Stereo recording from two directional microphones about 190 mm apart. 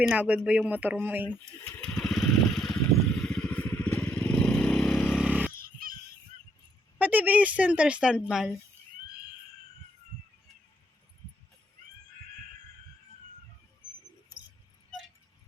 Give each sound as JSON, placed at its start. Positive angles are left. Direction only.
{"t": 0.1, "sound": "a woman's voice", "side_deg": -5}
{"t": 1.8, "sound": "vehicle", "side_deg": 5}
{"t": 3.2, "sound": "motorcycle", "side_deg": 5}
{"t": 5.5, "sound": "a sound", "side_deg": -50}
{"t": 7.0, "sound": "a woman's voice", "side_deg": -10}